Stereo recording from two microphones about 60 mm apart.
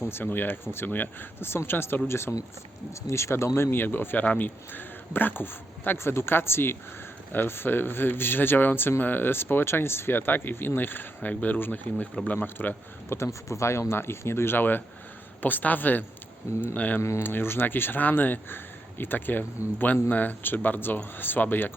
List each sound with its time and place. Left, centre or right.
0.0 s speech: left
12.5 s speech: left
13.1 s speech: left
17.0 s speech: left
17.2 s speech: left